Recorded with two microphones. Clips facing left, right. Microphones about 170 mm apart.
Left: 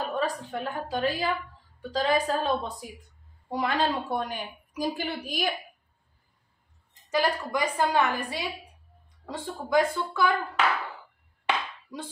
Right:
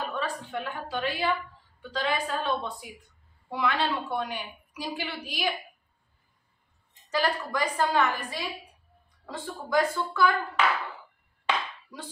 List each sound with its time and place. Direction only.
0.1 s a woman's voice: 40° left (ahead or behind)
7.1 s a woman's voice: 15° left (ahead or behind)
11.4 s a sound: 20° left (ahead or behind)